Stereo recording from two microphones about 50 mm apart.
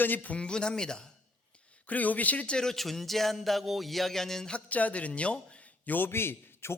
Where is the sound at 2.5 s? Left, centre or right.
Centre.